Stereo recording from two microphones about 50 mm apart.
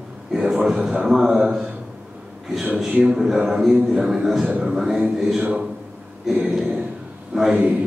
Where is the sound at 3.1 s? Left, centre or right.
Centre.